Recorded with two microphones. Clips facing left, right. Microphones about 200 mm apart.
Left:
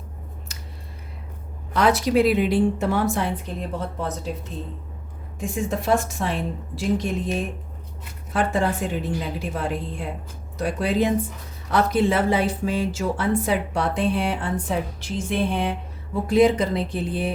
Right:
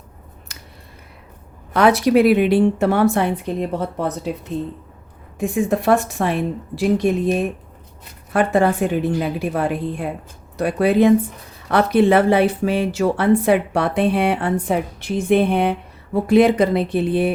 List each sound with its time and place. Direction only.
1.7 s speech: 60° right (ahead or behind)
5.4 s speech: 60° right (ahead or behind)